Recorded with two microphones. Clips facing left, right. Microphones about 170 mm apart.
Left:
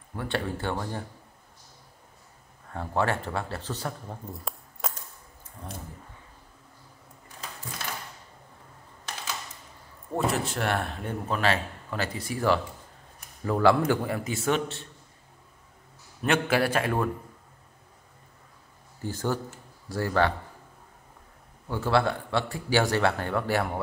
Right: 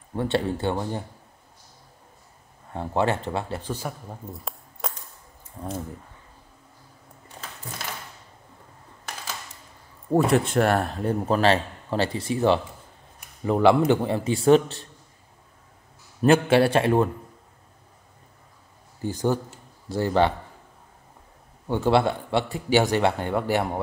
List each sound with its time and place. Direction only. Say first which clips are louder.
0.1 s a man's voice: right 6 dB; 25° right (ahead or behind)
2.7 s speech: right 3 dB; 20° right (ahead or behind); by 4.9 s centre (ahead or behind)
5.6 s a man's voice: right 8 dB; 25° right (ahead or behind)
10.2 s speech: right 3 dB; centre (ahead or behind)
10.5 s a man's voice: right 7 dB; 45° right (ahead or behind)
16.2 s a man's voice: right 7 dB; 30° right (ahead or behind)
18.9 s a man's voice: right 5 dB; 15° right (ahead or behind)
21.6 s a man's voice: right 4 dB; 20° right (ahead or behind)